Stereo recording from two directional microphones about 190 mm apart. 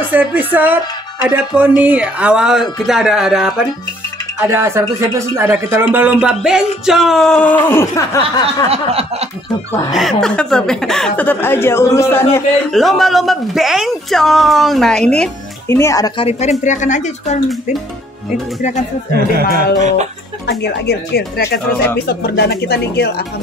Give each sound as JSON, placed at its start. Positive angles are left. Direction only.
{"t": 0.1, "sound": "speech", "side_deg": -10}
{"t": 1.8, "sound": "speech", "side_deg": -5}
{"t": 4.4, "sound": "speech", "side_deg": -15}
{"t": 8.6, "sound": "a sound", "side_deg": -30}
{"t": 9.8, "sound": "speech", "side_deg": 0}
{"t": 12.7, "sound": "speech", "side_deg": 0}
{"t": 16.3, "sound": "a woman's voice", "side_deg": 35}
{"t": 18.6, "sound": "a woman's voice", "side_deg": 40}
{"t": 19.5, "sound": "a sound", "side_deg": -40}
{"t": 20.4, "sound": "speech", "side_deg": 60}